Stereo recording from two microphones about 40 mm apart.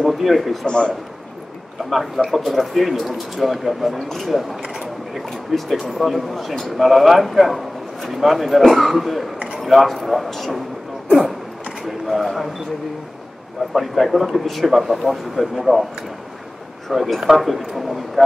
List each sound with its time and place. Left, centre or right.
0.0 s a man's voice: centre
0.7 s a man's voice: centre
1.9 s a man's voice: centre
11.8 s a sound: centre
13.7 s speech: centre
16.9 s speech: centre